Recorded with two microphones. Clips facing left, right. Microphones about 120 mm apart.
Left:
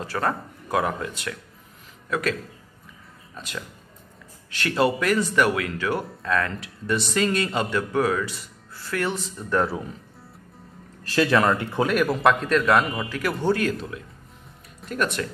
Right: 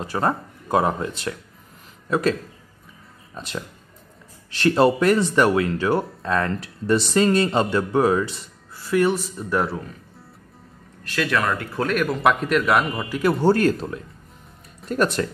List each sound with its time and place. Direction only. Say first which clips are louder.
0.0 s speech: right 3 dB; 20° right (ahead or behind)
3.3 s speech: right 4 dB; 30° right (ahead or behind)
8.7 s a woman's voice: right 7 dB; 15° right (ahead or behind)
11.1 s a man's voice: left 3 dB; 30° left (ahead or behind)
11.8 s a man's voice: even; 5° left (ahead or behind)
13.2 s speech: right 6 dB; 35° right (ahead or behind)